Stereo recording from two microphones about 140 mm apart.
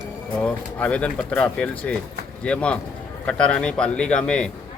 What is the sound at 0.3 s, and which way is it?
Speech, 10° left (ahead or behind).